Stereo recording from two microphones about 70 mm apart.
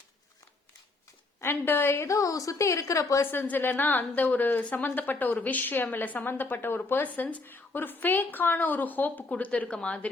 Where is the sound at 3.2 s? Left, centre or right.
Left.